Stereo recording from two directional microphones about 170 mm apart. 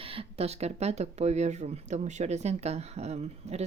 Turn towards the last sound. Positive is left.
turn(degrees=-40)  # may be behind; listen again after turning